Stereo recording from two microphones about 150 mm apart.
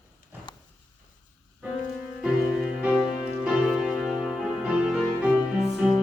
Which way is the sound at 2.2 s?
5° right (ahead or behind).